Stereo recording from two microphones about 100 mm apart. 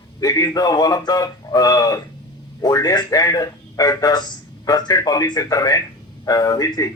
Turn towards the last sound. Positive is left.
turn(degrees=35)  # may be behind; listen again after turning